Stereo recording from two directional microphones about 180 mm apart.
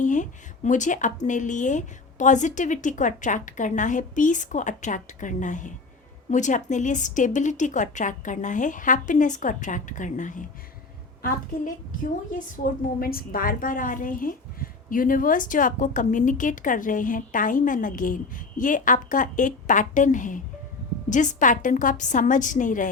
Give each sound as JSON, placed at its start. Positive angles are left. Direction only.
{"t": 0.0, "sound": "a woman's voice", "side_deg": 45}
{"t": 12.6, "sound": "a woman's voice", "side_deg": 55}